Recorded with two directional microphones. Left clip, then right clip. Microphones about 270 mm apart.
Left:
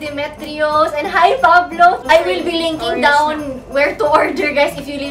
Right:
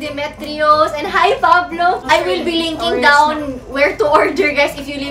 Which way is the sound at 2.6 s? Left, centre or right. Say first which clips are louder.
Even; centre.